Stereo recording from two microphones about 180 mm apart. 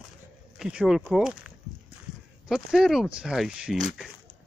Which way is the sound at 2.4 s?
Centre (ahead or behind).